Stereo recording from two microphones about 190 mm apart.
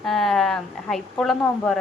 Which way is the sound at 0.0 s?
Centre (ahead or behind).